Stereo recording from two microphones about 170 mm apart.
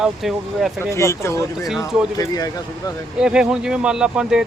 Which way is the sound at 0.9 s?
15° left (ahead or behind).